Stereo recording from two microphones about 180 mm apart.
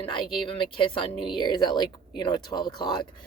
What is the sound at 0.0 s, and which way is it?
Speech, 30° left (ahead or behind).